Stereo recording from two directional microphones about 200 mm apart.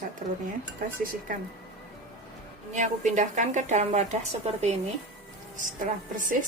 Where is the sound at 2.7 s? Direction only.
40° right (ahead or behind).